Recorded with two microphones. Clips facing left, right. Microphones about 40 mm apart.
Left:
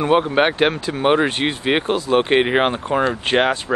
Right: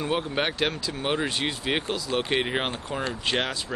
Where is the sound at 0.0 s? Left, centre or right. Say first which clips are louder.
Left 11 dB; left.